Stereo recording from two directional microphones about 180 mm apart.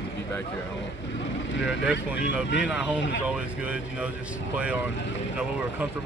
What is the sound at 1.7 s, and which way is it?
Speech, 80° left.